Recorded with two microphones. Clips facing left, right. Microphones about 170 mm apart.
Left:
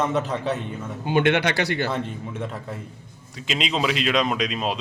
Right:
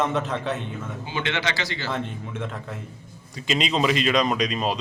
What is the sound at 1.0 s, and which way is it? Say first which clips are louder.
Speech: left 9 dB; 55° left (ahead or behind).